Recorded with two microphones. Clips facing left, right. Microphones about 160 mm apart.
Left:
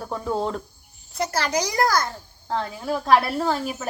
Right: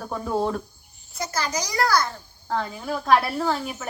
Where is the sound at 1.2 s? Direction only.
60° left (ahead or behind); by 2.0 s 45° left (ahead or behind).